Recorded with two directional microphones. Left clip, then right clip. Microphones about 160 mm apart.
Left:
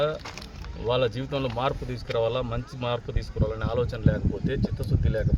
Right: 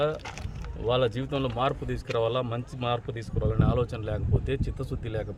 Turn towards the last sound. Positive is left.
turn(degrees=-30)  # may be behind; listen again after turning